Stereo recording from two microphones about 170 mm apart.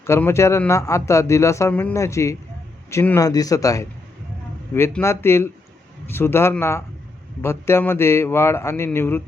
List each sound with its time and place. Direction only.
0.0 s speech: 15° left (ahead or behind)